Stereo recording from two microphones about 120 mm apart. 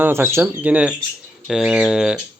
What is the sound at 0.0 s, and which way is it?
Speech, 20° right (ahead or behind).